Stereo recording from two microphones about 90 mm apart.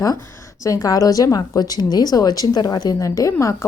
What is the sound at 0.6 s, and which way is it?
A woman's voice, 40° left (ahead or behind).